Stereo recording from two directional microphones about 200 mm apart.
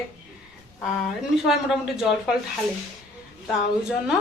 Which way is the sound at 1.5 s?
Centre (ahead or behind).